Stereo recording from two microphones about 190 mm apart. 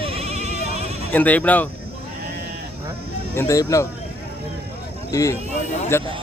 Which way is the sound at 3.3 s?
15° left (ahead or behind).